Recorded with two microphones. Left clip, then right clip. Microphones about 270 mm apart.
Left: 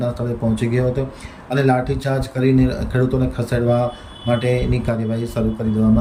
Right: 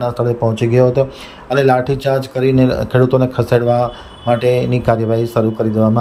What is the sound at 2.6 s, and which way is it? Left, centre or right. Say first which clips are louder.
Speech: right 7 dB; right.